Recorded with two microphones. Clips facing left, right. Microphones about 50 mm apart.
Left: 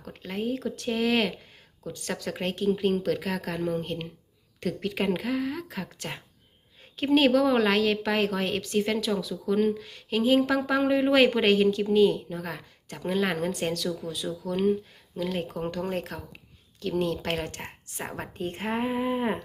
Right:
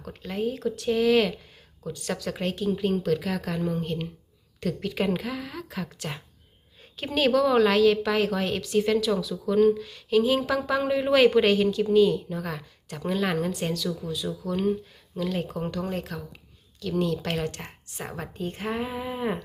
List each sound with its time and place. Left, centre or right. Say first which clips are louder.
0.1 s a woman's voice: right 1 dB; left